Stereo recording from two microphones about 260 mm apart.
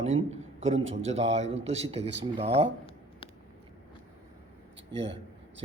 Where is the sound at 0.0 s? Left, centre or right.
Right.